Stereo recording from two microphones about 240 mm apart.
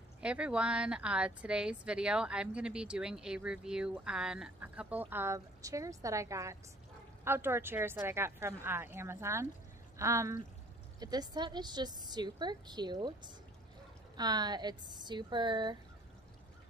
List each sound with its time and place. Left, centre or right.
0.2 s a woman's voice: centre